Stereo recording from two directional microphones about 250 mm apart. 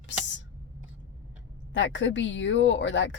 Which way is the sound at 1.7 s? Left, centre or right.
Left.